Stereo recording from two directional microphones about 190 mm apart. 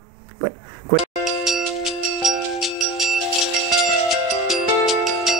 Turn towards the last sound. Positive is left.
turn(degrees=0)  # may be behind; listen again after turning